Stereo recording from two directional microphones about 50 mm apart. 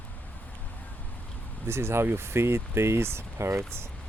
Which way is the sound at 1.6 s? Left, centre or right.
Right.